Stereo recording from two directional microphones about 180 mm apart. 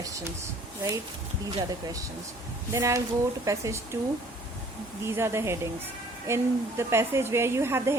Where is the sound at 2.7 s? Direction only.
15° right (ahead or behind).